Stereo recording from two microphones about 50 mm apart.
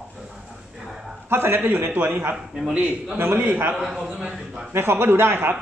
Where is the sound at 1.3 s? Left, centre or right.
Right.